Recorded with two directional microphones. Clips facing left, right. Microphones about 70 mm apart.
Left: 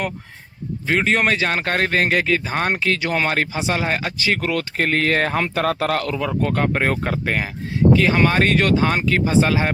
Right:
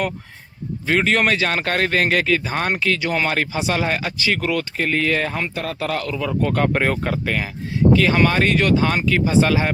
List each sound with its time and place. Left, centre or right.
0.9 s speech: centre; by 5.4 s left
5.4 s speech: left
5.8 s speech: left
6.2 s speech: left
8.5 s speech: left